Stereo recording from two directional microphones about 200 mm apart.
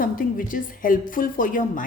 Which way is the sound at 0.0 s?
45° left (ahead or behind).